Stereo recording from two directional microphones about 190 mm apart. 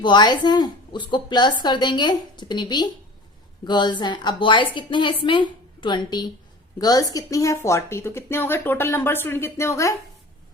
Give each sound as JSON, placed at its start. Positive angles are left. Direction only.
{"t": 0.0, "sound": "a woman's voice", "side_deg": 25}